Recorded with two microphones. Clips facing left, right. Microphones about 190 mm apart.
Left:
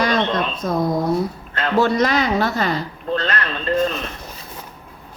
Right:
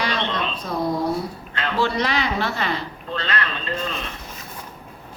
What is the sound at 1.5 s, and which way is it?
A woman's voice, 45° left (ahead or behind).